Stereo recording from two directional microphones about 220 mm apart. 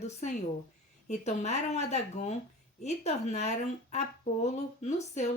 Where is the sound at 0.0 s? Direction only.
35° left (ahead or behind).